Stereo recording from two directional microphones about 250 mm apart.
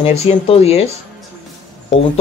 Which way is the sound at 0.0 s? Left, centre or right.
Left.